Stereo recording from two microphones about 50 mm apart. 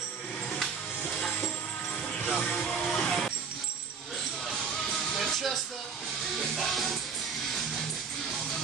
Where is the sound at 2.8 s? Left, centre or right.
Centre.